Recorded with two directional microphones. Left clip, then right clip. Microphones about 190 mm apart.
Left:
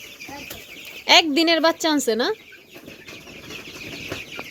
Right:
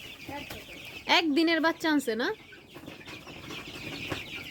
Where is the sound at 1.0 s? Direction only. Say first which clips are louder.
Left 9 dB; 10° left (ahead or behind).